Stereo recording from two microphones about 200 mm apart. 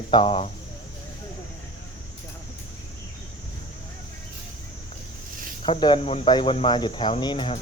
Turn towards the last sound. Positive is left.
turn(degrees=25)  # may be behind; listen again after turning